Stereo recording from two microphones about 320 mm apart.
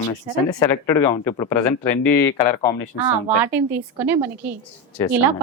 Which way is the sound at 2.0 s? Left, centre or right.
Left.